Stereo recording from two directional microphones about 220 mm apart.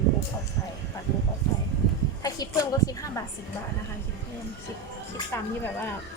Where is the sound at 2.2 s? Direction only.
15° left (ahead or behind).